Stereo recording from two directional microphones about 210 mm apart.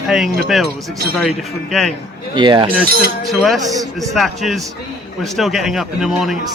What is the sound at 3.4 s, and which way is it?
Speech, centre (ahead or behind).